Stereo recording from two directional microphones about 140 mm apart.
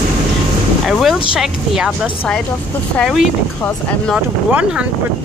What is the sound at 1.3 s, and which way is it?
A woman's voice, 5° right (ahead or behind).